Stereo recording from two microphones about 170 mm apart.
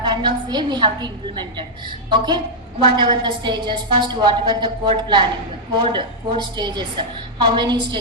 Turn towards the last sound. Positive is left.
turn(degrees=-25)  # may be behind; listen again after turning